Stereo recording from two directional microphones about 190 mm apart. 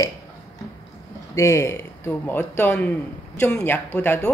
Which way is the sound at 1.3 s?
15° left (ahead or behind).